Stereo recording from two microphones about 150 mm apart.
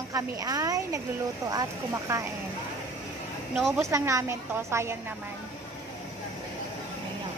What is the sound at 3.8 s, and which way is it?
A woman's voice, 20° right (ahead or behind).